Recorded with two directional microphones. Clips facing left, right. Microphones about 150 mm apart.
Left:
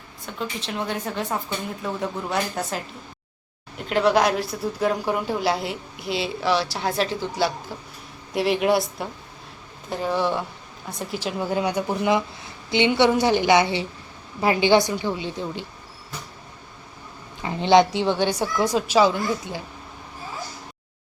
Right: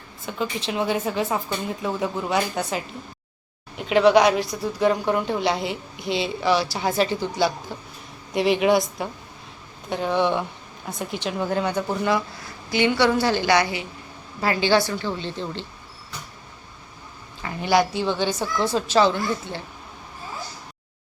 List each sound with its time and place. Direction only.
0.3 s a woman's voice: centre (ahead or behind)
17.4 s a woman's voice: 20° left (ahead or behind)